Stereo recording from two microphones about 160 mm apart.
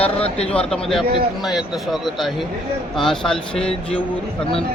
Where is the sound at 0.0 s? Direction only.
40° left (ahead or behind).